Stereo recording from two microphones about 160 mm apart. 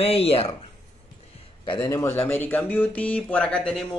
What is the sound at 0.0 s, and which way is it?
Speech, 35° left (ahead or behind).